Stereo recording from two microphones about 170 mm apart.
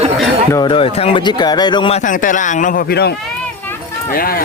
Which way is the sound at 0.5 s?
25° left (ahead or behind).